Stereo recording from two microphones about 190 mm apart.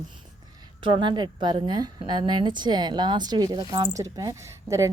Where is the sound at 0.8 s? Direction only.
25° right (ahead or behind).